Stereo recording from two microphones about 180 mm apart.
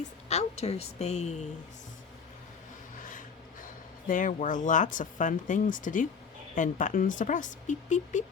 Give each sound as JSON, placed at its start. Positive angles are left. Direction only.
{"t": 0.3, "sound": "a woman's voice", "side_deg": 35}
{"t": 3.0, "sound": "speech", "side_deg": 45}